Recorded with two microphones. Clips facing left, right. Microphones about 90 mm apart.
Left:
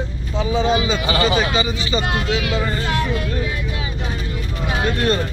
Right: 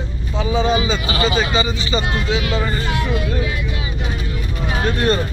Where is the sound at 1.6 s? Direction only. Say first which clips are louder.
Right 1 dB; 5° left (ahead or behind).